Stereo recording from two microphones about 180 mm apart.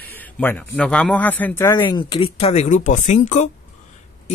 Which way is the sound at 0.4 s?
10° left (ahead or behind).